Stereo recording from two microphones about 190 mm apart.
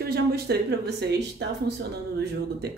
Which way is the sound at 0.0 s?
55° right (ahead or behind).